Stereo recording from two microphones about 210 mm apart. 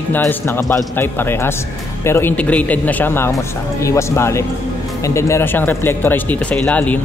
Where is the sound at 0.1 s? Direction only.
10° left (ahead or behind).